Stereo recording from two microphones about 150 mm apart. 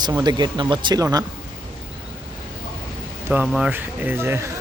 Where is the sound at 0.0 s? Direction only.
30° right (ahead or behind).